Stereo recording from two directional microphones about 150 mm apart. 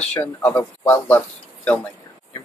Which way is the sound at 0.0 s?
10° left (ahead or behind).